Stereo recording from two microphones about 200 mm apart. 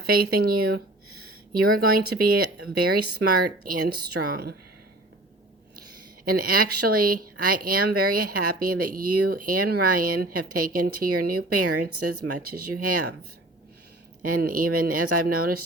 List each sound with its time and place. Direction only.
0.0 s a woman's voice: 50° right (ahead or behind)
6.2 s speech: 45° right (ahead or behind)
11.7 s speech: 90° right
12.5 s speech: 50° right (ahead or behind)
14.3 s speech: 45° right (ahead or behind)